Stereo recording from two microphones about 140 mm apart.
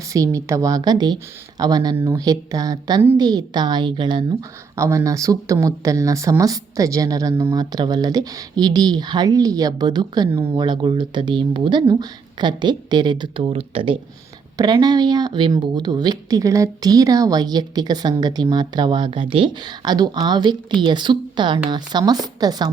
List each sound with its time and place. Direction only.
0.1 s a woman's voice: 20° right (ahead or behind)
4.7 s speech: 20° right (ahead or behind)
10.3 s speech: 20° right (ahead or behind)
10.6 s a woman's voice: 35° right (ahead or behind)
14.6 s a woman's voice: 30° right (ahead or behind)